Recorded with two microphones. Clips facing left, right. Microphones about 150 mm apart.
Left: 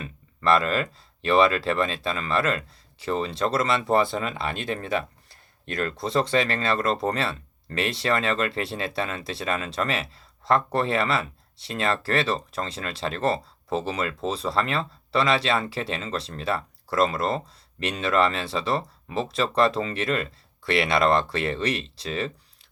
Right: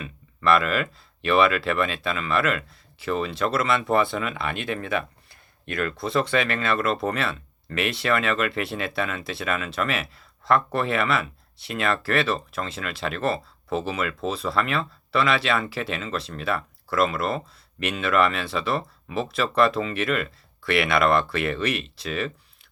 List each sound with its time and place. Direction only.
0.0 s speech: 35° left (ahead or behind)